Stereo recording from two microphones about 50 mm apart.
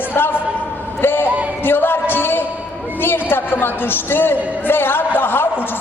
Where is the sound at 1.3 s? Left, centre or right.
Right.